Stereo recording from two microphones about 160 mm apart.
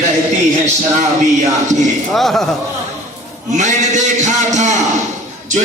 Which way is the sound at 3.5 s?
50° right (ahead or behind).